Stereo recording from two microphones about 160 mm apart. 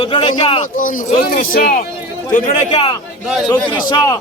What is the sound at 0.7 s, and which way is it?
Speech, 55° left (ahead or behind).